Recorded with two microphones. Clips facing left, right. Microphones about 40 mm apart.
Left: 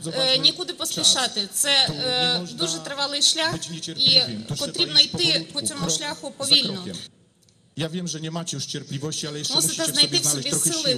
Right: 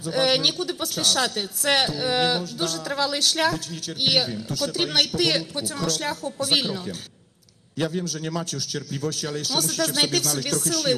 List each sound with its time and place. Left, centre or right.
0.0 s a woman's voice: left
8.0 s a woman's voice: left